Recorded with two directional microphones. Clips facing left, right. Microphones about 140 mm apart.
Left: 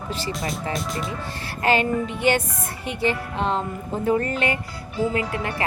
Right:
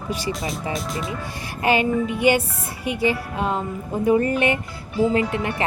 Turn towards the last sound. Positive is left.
turn(degrees=-20)  # may be behind; listen again after turning